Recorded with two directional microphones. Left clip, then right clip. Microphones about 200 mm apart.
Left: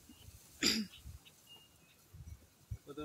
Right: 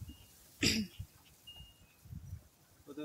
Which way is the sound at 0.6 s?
15° right (ahead or behind).